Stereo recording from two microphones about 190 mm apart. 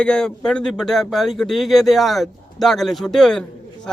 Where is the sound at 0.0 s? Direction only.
5° left (ahead or behind).